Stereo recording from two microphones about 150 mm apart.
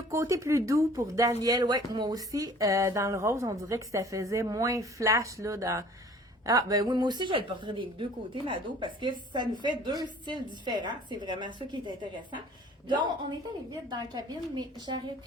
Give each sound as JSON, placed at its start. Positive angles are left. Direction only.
{"t": 0.1, "sound": "speech", "side_deg": -20}
{"t": 13.7, "sound": "speech", "side_deg": -30}